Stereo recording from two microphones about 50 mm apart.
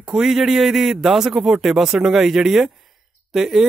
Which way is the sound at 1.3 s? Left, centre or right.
Right.